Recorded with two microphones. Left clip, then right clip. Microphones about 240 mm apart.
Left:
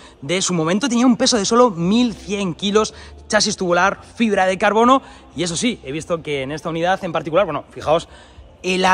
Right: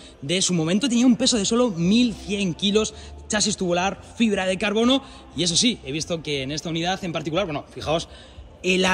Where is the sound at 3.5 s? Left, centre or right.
Left.